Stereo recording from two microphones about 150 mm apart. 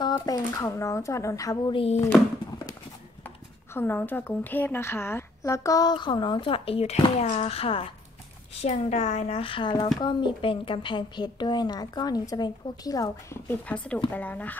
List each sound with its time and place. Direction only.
0.0 s speech: 25° left (ahead or behind)
1.7 s speech: 35° left (ahead or behind)
3.3 s speech: 15° left (ahead or behind)